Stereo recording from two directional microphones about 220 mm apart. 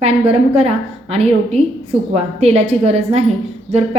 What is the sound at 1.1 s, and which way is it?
A woman's voice, 30° right (ahead or behind).